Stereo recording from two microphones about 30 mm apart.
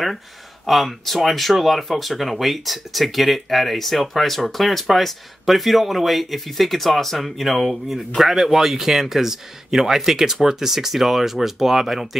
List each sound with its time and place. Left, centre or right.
0.7 s speech: centre